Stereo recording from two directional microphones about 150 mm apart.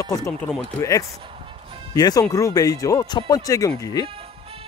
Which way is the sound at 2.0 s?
25° left (ahead or behind).